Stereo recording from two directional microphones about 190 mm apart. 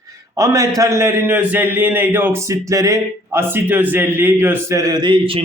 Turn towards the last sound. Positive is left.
turn(degrees=-30)  # may be behind; listen again after turning